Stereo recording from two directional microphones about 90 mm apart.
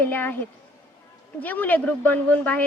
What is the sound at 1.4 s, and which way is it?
A woman's voice, 20° left (ahead or behind).